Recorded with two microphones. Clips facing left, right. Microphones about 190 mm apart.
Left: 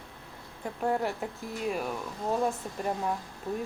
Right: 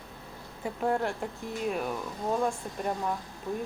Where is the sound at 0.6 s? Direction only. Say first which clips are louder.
Right 1 dB; centre (ahead or behind).